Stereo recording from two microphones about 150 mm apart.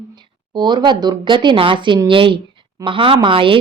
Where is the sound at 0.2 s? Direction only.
30° right (ahead or behind).